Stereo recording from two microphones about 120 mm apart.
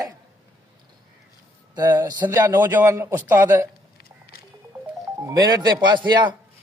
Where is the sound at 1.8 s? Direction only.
30° right (ahead or behind).